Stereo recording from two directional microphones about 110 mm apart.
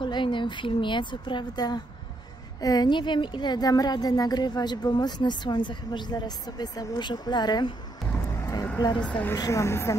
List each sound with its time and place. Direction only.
0.0 s speech: 50° left (ahead or behind)
8.1 s vehicle: 30° left (ahead or behind)
9.0 s speech: 10° left (ahead or behind)
9.3 s speech: 30° left (ahead or behind)